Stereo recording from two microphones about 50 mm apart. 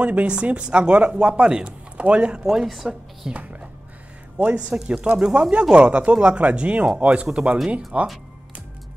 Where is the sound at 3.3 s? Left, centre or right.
Right.